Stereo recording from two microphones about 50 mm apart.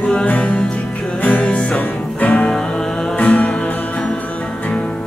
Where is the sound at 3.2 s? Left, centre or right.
Left.